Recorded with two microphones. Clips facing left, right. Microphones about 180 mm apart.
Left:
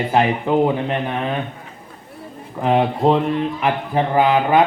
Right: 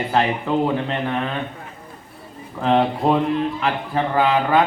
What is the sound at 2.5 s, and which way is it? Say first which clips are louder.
A man's voice: left 1 dB; 15° left (ahead or behind).